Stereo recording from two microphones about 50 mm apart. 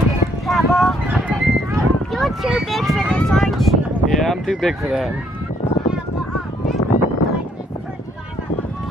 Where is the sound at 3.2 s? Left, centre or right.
Centre.